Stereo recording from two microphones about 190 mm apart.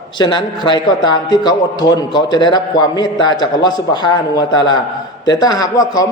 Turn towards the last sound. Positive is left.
turn(degrees=20)  # may be behind; listen again after turning